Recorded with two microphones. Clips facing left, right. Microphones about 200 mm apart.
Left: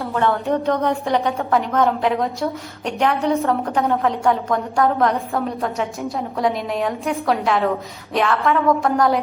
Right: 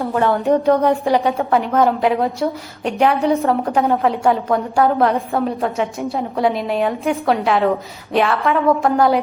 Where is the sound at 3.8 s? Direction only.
Centre (ahead or behind).